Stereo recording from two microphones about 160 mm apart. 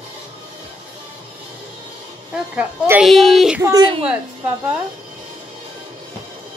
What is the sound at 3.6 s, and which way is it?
Speech, 25° right (ahead or behind).